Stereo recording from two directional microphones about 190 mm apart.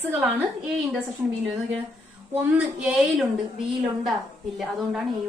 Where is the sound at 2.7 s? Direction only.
5° right (ahead or behind).